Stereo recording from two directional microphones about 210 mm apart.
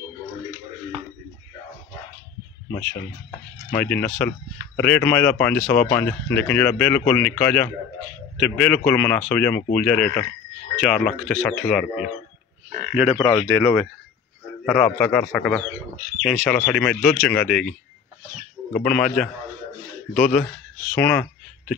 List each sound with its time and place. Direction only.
3.7 s speech: 5° left (ahead or behind)
13.2 s speech: 20° left (ahead or behind)
14.7 s speech: 5° left (ahead or behind)
18.8 s speech: 5° left (ahead or behind)
20.2 s speech: 35° left (ahead or behind)
20.9 s a sound: 10° left (ahead or behind)